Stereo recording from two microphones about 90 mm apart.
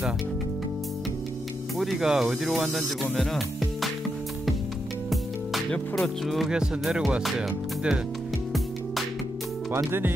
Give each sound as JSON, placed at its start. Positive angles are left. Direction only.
{"t": 1.8, "sound": "speech", "side_deg": -5}
{"t": 5.1, "sound": "speech", "side_deg": 0}
{"t": 7.2, "sound": "music", "side_deg": -5}
{"t": 9.8, "sound": "speech", "side_deg": -25}